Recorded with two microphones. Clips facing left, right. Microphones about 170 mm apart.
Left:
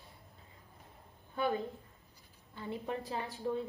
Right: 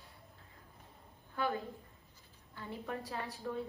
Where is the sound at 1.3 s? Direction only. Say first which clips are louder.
Left 3 dB; 20° left (ahead or behind).